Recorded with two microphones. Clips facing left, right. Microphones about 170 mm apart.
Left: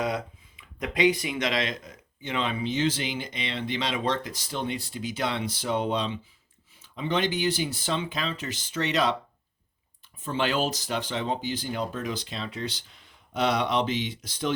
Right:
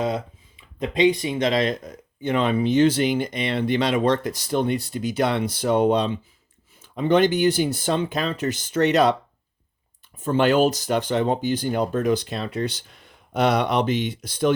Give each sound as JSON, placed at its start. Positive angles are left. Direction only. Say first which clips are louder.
{"t": 0.0, "sound": "speech", "louder": "right 4 dB", "side_deg": -25}
{"t": 2.2, "sound": "speech", "louder": "right 8 dB", "side_deg": -50}
{"t": 10.2, "sound": "speech", "louder": "right 9 dB", "side_deg": -50}